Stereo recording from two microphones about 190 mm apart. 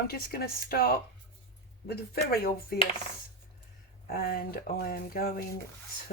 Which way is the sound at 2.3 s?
55° left (ahead or behind).